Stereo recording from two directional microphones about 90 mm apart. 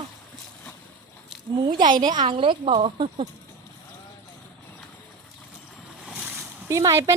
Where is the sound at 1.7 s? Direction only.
55° right (ahead or behind); by 3.0 s 90° right.